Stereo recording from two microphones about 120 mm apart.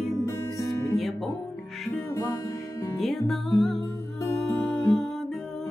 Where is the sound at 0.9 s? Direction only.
Centre (ahead or behind).